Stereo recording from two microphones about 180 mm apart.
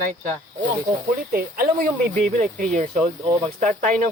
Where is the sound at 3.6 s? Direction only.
45° right (ahead or behind).